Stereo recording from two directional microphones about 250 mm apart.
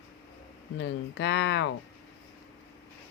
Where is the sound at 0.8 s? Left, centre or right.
Left.